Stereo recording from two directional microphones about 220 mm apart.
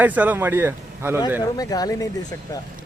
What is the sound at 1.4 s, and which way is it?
Speech, 15° left (ahead or behind).